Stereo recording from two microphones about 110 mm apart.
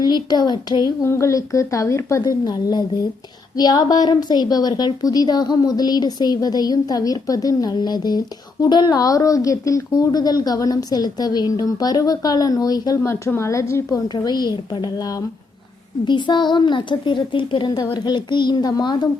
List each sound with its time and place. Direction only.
0.0 s a woman's voice: 40° left (ahead or behind)
1.0 s a woman's voice: 25° left (ahead or behind)
13.0 s a woman's voice: 25° left (ahead or behind)
14.1 s a woman's voice: 40° left (ahead or behind)